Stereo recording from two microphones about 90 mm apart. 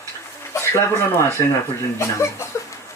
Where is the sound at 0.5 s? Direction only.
30° left (ahead or behind).